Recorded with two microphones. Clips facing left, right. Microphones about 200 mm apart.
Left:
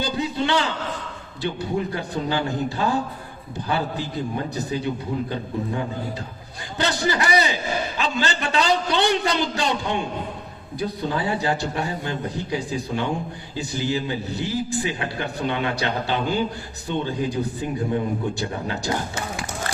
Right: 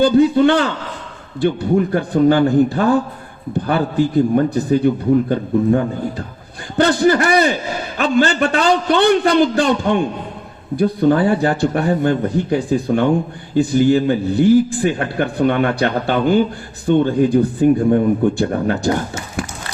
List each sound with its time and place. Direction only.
0.0 s a man's voice: 50° right (ahead or behind)